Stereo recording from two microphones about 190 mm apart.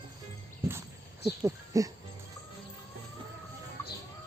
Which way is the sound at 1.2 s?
15° right (ahead or behind).